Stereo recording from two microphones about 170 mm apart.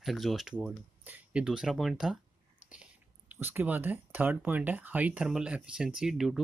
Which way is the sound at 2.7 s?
10° right (ahead or behind).